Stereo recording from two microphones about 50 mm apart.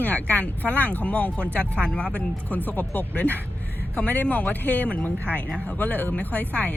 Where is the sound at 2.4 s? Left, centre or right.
Left.